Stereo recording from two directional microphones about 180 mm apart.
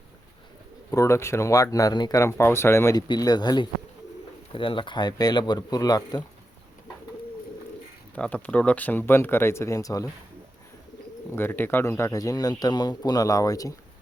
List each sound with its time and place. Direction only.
0.9 s speech: 15° left (ahead or behind)
8.1 s speech: 10° left (ahead or behind)
11.3 s speech: 10° left (ahead or behind)